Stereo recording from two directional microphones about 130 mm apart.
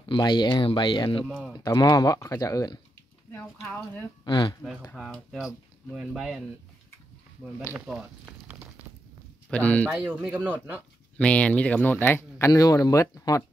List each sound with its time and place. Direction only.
0.1 s speech: 35° left (ahead or behind)
3.3 s speech: 15° left (ahead or behind)
4.2 s speech: 35° left (ahead or behind)
4.9 s speech: 5° right (ahead or behind)
7.7 s speech: 5° right (ahead or behind)
8.5 s a sound: 10° right (ahead or behind)
9.5 s speech: 10° left (ahead or behind)
9.8 s speech: 5° right (ahead or behind)
10.5 s speech: 10° left (ahead or behind); by 13.4 s 25° left (ahead or behind)